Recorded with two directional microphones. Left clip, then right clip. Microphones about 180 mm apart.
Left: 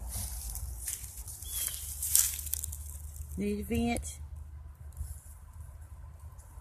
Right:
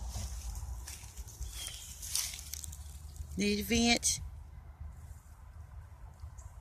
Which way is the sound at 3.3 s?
10° right (ahead or behind).